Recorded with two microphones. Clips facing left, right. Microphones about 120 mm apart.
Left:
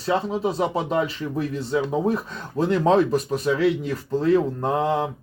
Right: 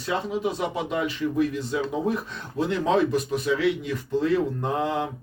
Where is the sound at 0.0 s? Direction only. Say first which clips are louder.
Left 3 dB; 35° left (ahead or behind).